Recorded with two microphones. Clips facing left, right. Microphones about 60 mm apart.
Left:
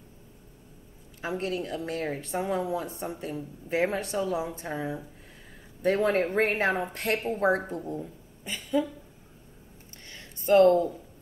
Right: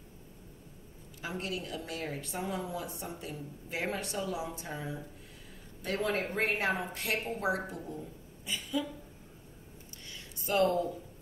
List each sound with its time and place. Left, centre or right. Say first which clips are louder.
1.2 s speech: left 7 dB; left
6.0 s a woman's voice: left 7 dB; left
10.1 s a sound: left 10 dB; left